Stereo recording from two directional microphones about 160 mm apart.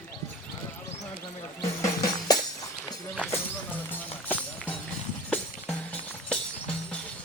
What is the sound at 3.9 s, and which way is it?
Run, 10° left (ahead or behind).